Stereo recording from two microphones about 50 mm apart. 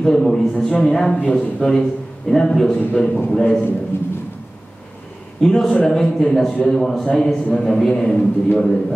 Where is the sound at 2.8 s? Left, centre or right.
Left.